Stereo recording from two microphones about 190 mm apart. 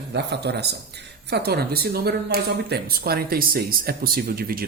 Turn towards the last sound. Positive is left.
turn(degrees=-50)  # may be behind; listen again after turning